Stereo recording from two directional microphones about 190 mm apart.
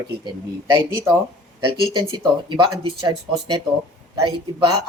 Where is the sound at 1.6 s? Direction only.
25° right (ahead or behind).